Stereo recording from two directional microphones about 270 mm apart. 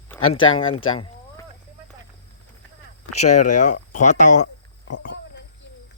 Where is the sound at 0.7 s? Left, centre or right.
Left.